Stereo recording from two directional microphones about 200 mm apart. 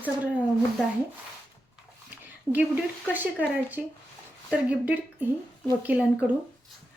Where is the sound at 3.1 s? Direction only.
10° right (ahead or behind).